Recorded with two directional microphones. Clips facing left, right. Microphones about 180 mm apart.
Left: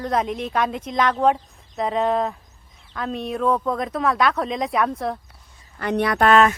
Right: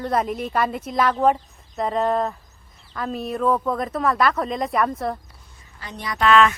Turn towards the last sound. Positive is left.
turn(degrees=40)  # may be behind; listen again after turning